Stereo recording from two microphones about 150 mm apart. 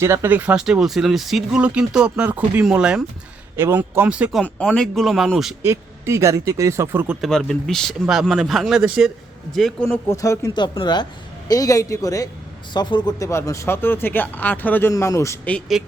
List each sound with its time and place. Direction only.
0.0 s speech: 15° right (ahead or behind)
4.4 s speech: 10° left (ahead or behind)
5.6 s speech: 20° right (ahead or behind)
7.2 s speech: 5° left (ahead or behind)
10.1 s speech: 20° left (ahead or behind)
15.4 s speech: 5° left (ahead or behind)